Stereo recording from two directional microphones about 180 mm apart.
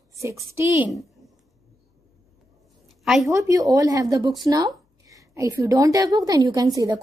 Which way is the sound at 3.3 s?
20° right (ahead or behind).